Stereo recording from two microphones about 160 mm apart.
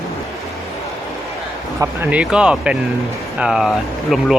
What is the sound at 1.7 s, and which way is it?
Speech, 10° right (ahead or behind).